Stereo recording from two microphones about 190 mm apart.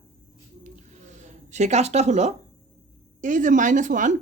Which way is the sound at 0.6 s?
40° right (ahead or behind).